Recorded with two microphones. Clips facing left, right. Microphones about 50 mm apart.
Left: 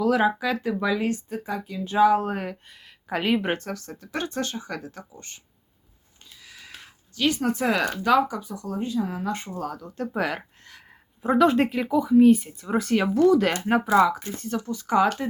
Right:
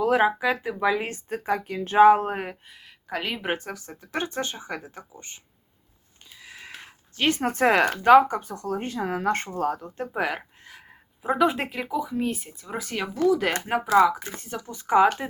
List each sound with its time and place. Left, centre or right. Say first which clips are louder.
0.0 s speech: right 1 dB; right
0.3 s speech: even; centre
1.3 s speech: right 4 dB; right
2.3 s speech: left 1 dB; centre
2.6 s speech: right 1 dB; centre
3.1 s speech: left 6 dB; centre
3.4 s speech: left 1 dB; centre; by 9.5 s right
9.5 s speech: right 5 dB; right
10.2 s speech: even; centre
14.3 s speech: left 6 dB; centre